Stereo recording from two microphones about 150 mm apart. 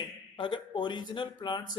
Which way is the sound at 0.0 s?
30° left (ahead or behind).